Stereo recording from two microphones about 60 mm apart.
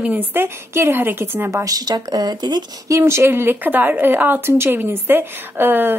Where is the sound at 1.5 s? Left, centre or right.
Right.